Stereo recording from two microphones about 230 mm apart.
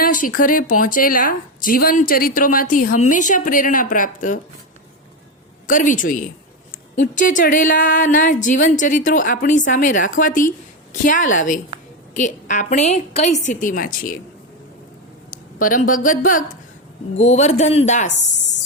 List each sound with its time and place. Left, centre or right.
0.0 s speech: left
5.6 s speech: left
15.3 s speech: left